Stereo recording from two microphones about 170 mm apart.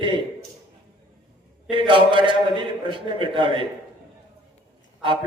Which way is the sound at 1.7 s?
30° right (ahead or behind).